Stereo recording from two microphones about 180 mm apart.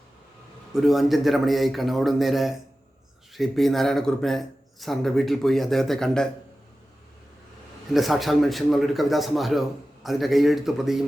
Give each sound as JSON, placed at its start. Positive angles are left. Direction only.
{"t": 0.7, "sound": "a man's voice", "side_deg": 0}
{"t": 7.9, "sound": "a man's voice", "side_deg": 0}